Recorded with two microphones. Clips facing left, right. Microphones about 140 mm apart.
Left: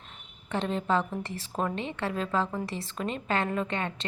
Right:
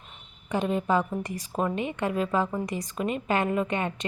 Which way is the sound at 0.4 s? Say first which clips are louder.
Right 3 dB; 10° right (ahead or behind).